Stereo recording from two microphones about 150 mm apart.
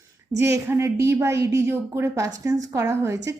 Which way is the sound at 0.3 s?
20° right (ahead or behind).